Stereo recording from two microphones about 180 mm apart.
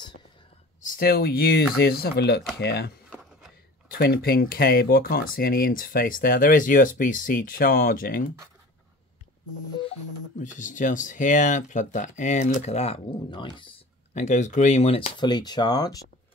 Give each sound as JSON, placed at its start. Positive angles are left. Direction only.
{"t": 0.9, "sound": "speech", "side_deg": 55}
{"t": 3.9, "sound": "speech", "side_deg": 55}
{"t": 10.4, "sound": "speech", "side_deg": 45}
{"t": 14.1, "sound": "speech", "side_deg": 40}